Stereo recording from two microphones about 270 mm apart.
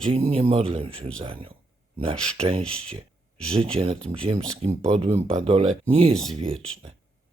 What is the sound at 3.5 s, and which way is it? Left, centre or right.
Speech, right.